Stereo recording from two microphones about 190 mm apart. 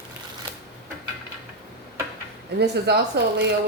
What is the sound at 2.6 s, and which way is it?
Speech, 60° right (ahead or behind).